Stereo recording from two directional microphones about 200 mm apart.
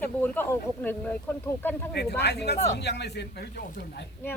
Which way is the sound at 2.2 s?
55° left (ahead or behind).